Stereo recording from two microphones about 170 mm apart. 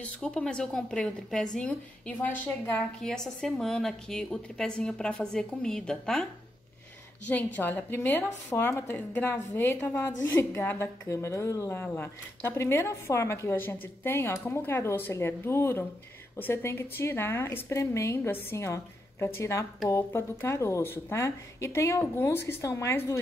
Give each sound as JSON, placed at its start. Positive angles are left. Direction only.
{"t": 0.0, "sound": "a woman's voice", "side_deg": 5}
{"t": 7.2, "sound": "a woman's voice", "side_deg": 10}